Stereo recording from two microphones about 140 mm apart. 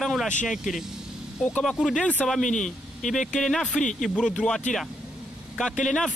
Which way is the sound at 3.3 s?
5° left (ahead or behind).